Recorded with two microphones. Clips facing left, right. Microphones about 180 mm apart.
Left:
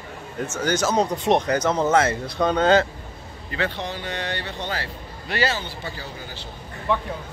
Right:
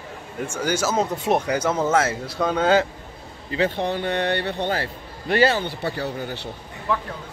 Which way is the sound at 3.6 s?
50° right (ahead or behind).